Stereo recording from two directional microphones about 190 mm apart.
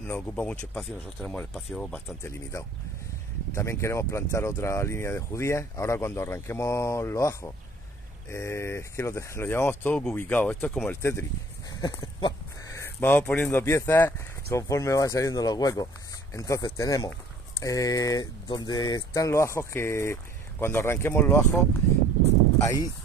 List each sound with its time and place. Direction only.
0.0 s speech: 10° left (ahead or behind)
22.6 s speech: 15° left (ahead or behind)